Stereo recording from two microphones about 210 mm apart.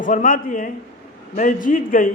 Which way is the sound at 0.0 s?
40° left (ahead or behind).